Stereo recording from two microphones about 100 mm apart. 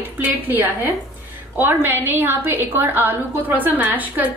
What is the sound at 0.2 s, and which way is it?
A woman's voice, 20° right (ahead or behind).